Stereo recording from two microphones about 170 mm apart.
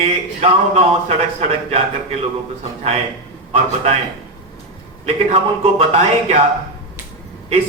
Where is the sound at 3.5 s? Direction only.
40° right (ahead or behind).